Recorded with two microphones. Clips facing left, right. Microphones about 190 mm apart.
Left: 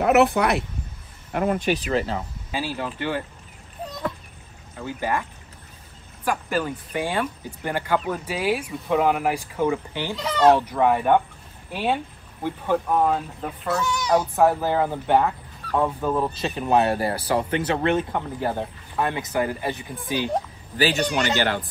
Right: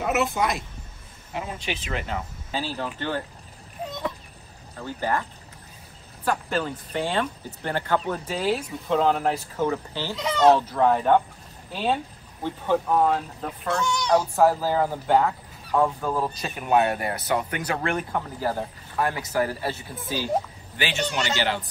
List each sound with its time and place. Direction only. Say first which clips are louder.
0.0 s speech: left 6 dB; 65° left (ahead or behind); by 2.1 s 35° left (ahead or behind)
2.5 s speech: left 1 dB; 10° left (ahead or behind)
4.8 s speech: left 1 dB; 15° left (ahead or behind)
6.2 s speech: left 1 dB; 10° left (ahead or behind)
10.1 s speech: left 1 dB; centre (ahead or behind)
10.5 s speech: left 1 dB; 15° left (ahead or behind)
14.3 s speech: left 1 dB; 20° left (ahead or behind)
20.7 s speech: left 5 dB; 40° left (ahead or behind)